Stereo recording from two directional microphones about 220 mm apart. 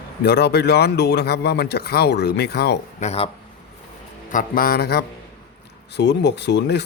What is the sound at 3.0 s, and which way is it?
Speech, 30° left (ahead or behind).